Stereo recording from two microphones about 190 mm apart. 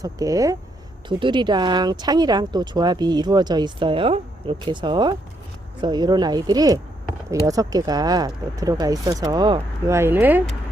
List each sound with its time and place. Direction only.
0.0 s speech: 20° right (ahead or behind)